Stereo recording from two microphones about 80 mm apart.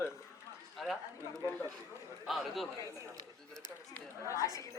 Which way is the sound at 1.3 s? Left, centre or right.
Right.